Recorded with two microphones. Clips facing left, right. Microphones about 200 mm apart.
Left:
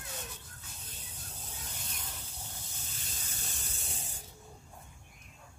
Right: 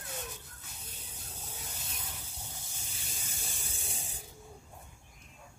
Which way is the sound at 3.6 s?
10° right (ahead or behind).